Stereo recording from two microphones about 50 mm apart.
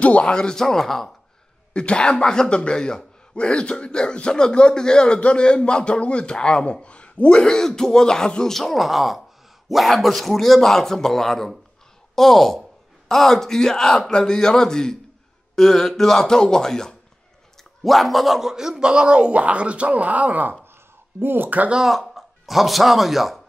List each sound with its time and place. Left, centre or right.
0.0 s speech: left
0.3 s speech: centre
1.7 s speech: left
8.5 s a man's voice: centre
17.8 s speech: centre; by 20.5 s right
21.2 s speech: right
21.8 s speech: centre